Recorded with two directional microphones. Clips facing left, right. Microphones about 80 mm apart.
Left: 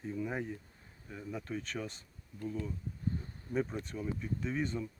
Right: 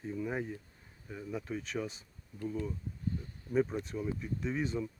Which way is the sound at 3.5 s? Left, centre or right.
Centre.